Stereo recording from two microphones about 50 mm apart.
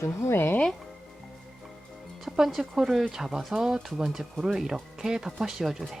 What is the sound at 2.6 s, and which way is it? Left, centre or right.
Speech, centre.